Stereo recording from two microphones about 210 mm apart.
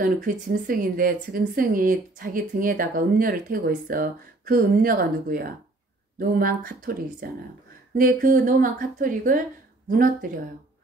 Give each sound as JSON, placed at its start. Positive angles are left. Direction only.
{"t": 0.0, "sound": "a woman's voice", "side_deg": -45}